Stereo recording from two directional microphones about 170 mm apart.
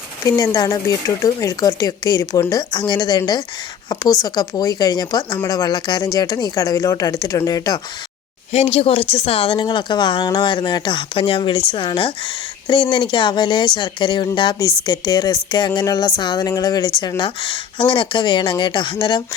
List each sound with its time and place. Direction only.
0.3 s a woman's voice: 20° left (ahead or behind)
8.5 s a woman's voice: 35° left (ahead or behind)